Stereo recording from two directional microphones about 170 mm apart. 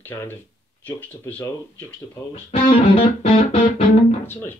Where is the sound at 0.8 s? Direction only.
15° left (ahead or behind).